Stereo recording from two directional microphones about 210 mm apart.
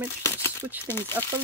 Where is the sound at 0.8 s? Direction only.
10° left (ahead or behind).